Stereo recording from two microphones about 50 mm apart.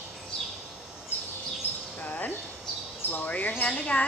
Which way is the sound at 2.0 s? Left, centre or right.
Left.